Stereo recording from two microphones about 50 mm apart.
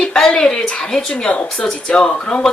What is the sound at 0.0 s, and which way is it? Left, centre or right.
Speech, centre.